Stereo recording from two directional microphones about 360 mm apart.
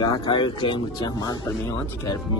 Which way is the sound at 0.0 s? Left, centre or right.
Centre.